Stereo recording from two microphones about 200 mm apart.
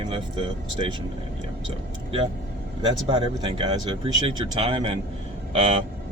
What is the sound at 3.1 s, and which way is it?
Speech, 25° right (ahead or behind).